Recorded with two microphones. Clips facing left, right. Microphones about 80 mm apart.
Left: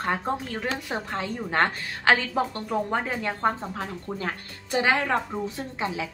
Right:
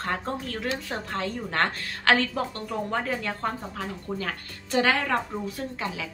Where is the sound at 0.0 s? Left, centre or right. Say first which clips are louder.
Left 3 dB; centre.